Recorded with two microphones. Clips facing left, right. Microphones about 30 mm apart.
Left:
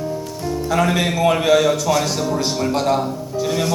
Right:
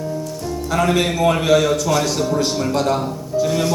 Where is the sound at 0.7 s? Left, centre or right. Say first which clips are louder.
Right 1 dB; centre.